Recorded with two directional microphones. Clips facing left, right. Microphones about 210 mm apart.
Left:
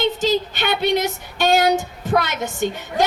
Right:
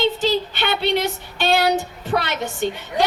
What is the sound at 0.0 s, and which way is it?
A woman's voice, 45° left (ahead or behind).